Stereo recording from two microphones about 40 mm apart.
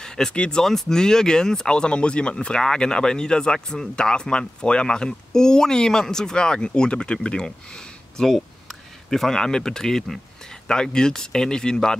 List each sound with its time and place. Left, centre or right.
0.0 s a sound: centre
0.3 s speech: left
0.7 s speech: centre